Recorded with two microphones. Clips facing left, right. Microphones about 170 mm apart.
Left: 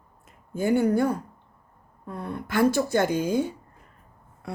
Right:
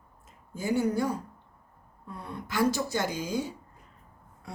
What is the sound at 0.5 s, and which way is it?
Speech, 60° left (ahead or behind).